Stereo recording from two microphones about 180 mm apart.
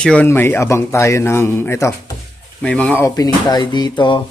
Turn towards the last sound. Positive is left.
turn(degrees=25)  # may be behind; listen again after turning